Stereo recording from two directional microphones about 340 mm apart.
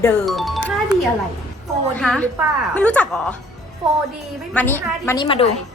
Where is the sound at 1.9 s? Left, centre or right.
Centre.